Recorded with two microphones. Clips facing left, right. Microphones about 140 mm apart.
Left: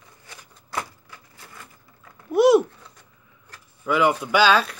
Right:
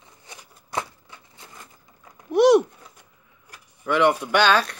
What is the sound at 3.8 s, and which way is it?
Speech, centre (ahead or behind).